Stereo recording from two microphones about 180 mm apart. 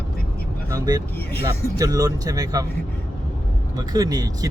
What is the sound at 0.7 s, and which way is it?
Speech, 20° right (ahead or behind).